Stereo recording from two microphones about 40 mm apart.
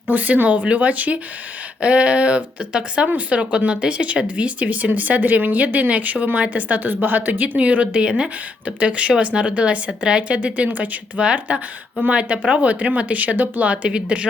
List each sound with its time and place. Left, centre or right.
0.1 s a woman's voice: right
3.1 s a woman's voice: right